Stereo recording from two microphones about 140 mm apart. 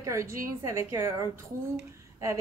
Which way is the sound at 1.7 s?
20° right (ahead or behind).